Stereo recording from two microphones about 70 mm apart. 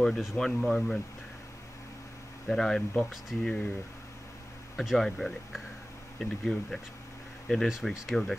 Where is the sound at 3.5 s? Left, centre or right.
Centre.